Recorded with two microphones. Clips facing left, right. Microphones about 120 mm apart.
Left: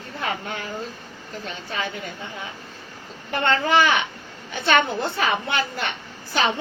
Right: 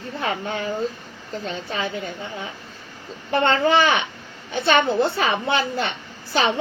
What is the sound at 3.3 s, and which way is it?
Speech, 25° right (ahead or behind).